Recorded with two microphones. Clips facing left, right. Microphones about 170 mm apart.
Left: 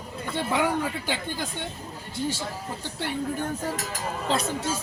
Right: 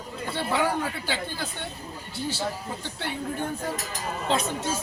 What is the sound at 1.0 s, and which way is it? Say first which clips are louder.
Speech: left 1 dB; 15° left (ahead or behind).